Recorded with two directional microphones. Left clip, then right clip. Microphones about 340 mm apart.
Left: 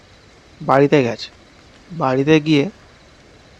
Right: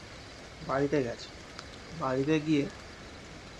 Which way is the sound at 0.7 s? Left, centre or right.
Left.